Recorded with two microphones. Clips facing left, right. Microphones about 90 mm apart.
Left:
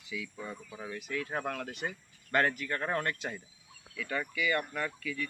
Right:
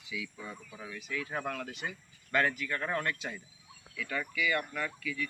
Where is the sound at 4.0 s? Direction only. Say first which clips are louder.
Left 1 dB; 35° left (ahead or behind).